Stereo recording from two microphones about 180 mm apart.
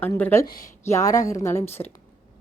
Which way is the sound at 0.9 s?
15° left (ahead or behind).